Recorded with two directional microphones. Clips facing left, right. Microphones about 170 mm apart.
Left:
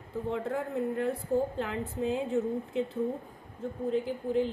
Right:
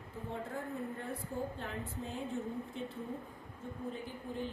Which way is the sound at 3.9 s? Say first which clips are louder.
Left 13 dB; 90° left.